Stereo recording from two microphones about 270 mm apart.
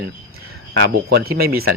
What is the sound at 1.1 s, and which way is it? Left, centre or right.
Speech, right.